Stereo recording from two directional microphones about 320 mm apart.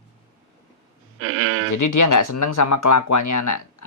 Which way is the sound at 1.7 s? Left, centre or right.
Left.